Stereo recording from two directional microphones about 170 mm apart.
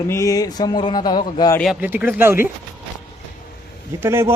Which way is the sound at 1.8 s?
10° right (ahead or behind).